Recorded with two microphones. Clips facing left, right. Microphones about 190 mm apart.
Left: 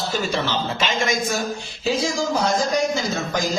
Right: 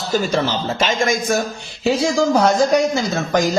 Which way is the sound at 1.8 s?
65° right (ahead or behind).